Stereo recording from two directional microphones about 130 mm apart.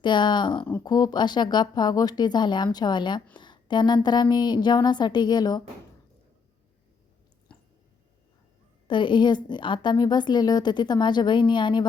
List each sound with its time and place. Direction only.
0.0 s a woman's voice: 35° left (ahead or behind)
8.9 s a woman's voice: 40° left (ahead or behind)